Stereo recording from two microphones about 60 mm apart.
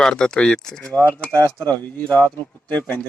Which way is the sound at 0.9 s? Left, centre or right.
Right.